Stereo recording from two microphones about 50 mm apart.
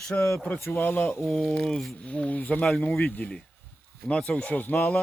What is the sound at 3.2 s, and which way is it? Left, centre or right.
Speech, left.